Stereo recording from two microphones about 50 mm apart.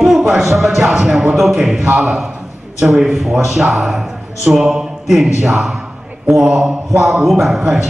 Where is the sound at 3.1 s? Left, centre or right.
Centre.